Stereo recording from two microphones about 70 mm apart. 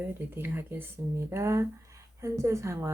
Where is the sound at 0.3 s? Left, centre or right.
Right.